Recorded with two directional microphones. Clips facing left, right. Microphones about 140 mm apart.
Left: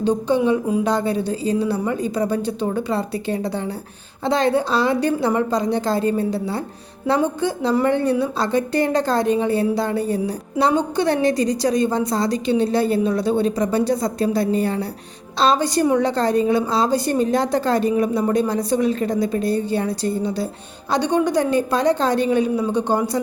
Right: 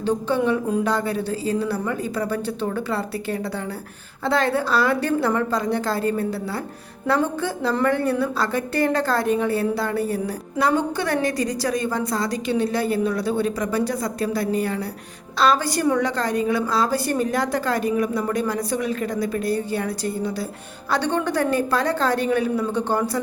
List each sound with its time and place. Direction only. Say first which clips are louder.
0.0 s a woman's voice: left 3 dB; 15° left (ahead or behind)
20.9 s a woman's voice: left 4 dB; 15° left (ahead or behind)